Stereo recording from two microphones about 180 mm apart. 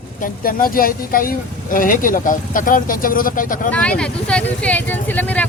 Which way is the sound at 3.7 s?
5° left (ahead or behind).